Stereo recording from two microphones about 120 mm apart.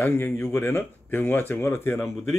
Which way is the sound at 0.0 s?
20° left (ahead or behind).